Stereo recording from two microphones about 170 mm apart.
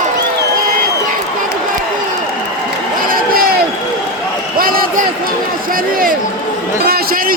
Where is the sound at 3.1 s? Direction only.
60° right (ahead or behind).